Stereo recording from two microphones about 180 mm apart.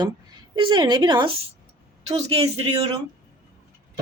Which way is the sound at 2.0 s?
35° right (ahead or behind).